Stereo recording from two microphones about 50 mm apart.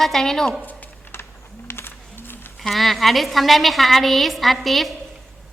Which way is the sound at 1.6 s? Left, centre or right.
Left.